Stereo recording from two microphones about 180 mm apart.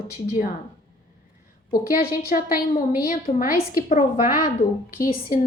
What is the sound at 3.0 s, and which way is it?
A woman's voice, 55° left (ahead or behind).